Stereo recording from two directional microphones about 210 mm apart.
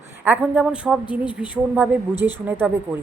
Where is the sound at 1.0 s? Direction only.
25° left (ahead or behind).